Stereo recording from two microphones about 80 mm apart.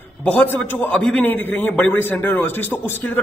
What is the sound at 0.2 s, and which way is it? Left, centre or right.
A man's voice, centre.